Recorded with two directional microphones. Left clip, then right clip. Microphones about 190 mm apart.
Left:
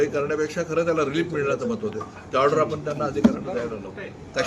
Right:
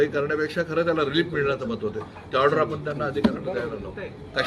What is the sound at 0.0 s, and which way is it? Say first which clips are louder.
A man's voice: even; centre (ahead or behind).